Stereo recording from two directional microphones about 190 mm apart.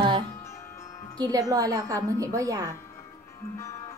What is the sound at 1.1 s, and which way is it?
A woman's voice, 20° right (ahead or behind).